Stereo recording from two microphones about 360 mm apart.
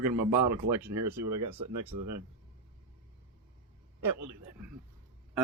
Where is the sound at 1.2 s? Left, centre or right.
Right.